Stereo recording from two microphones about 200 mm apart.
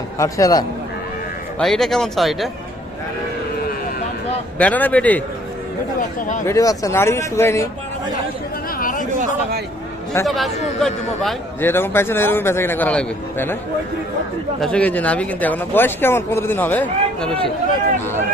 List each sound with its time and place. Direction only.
0.2 s speech: 15° left (ahead or behind)
1.5 s a man's voice: centre (ahead or behind)
4.5 s speech: 10° left (ahead or behind)
6.1 s speech: 40° left (ahead or behind)
6.4 s speech: 15° left (ahead or behind)
8.8 s chatter: 45° left (ahead or behind)
10.2 s a man's voice: centre (ahead or behind)
14.6 s speech: 5° left (ahead or behind)